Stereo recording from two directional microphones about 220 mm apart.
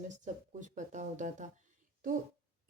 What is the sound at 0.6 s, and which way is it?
Speech, 35° right (ahead or behind).